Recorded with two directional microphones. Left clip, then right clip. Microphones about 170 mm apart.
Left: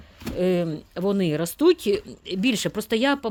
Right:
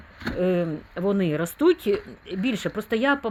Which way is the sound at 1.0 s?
50° left (ahead or behind).